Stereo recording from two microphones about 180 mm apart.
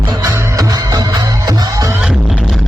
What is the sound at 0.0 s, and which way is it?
Music, 20° right (ahead or behind).